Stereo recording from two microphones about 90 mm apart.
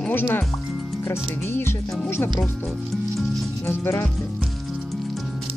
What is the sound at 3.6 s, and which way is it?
Speech, 30° left (ahead or behind).